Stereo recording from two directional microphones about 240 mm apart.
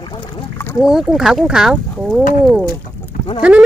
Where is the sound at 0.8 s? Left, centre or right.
Centre.